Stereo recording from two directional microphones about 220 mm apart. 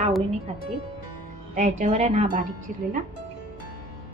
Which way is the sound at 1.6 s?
30° right (ahead or behind).